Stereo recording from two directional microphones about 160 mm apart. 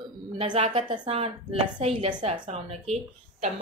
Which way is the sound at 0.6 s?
35° right (ahead or behind).